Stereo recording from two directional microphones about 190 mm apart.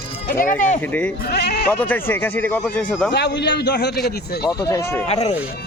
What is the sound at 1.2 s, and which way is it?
Speech, 60° left (ahead or behind).